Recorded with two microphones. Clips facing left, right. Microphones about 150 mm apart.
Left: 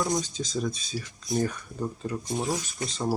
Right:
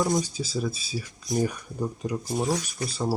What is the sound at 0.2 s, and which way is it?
Speech, 10° right (ahead or behind).